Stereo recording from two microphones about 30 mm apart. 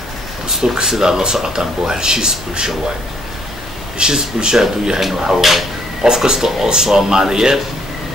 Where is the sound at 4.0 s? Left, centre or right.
Right.